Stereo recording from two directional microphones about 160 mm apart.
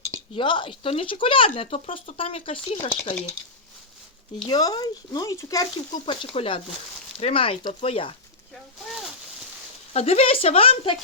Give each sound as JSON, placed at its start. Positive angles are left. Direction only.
{"t": 0.3, "sound": "speech", "side_deg": 30}
{"t": 4.4, "sound": "speech", "side_deg": 25}
{"t": 9.9, "sound": "speech", "side_deg": 40}